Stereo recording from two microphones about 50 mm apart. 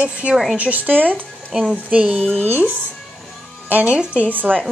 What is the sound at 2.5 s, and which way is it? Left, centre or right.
Speech, right.